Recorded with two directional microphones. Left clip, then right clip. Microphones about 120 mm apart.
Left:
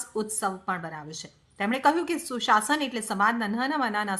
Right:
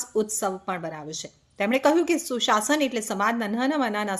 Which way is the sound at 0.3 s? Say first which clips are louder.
Right 1 dB; 30° right (ahead or behind).